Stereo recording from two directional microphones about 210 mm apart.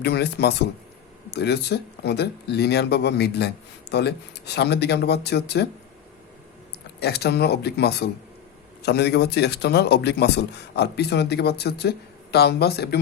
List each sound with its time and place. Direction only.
0.0 s speech: 50° left (ahead or behind)
7.0 s speech: 50° left (ahead or behind)